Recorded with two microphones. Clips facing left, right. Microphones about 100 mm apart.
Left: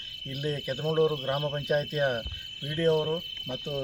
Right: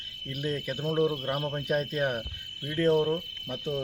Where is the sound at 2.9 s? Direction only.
Centre (ahead or behind).